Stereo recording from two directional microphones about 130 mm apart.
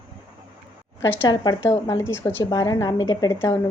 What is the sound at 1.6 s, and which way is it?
A woman's voice, 20° left (ahead or behind).